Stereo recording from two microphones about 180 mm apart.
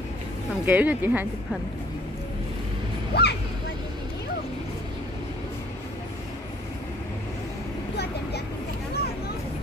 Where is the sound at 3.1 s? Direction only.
65° left (ahead or behind).